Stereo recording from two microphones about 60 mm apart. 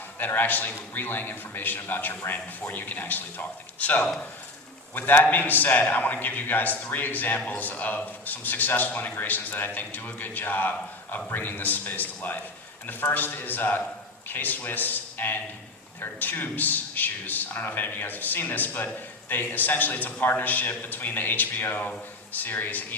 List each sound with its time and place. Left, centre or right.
0.2 s a man's voice: left